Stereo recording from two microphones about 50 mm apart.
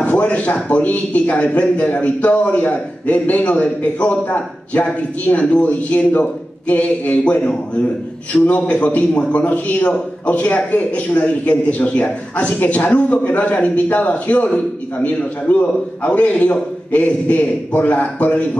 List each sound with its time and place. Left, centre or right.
0.0 s speech: left